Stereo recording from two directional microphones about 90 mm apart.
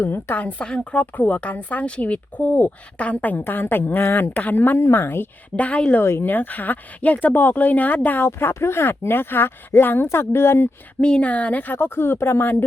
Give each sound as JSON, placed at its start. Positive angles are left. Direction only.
{"t": 0.0, "sound": "a woman's voice", "side_deg": 20}
{"t": 6.0, "sound": "a woman's voice", "side_deg": 25}
{"t": 11.0, "sound": "a woman's voice", "side_deg": 15}